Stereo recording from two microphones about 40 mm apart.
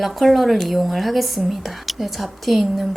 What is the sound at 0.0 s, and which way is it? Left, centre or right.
Speech, centre.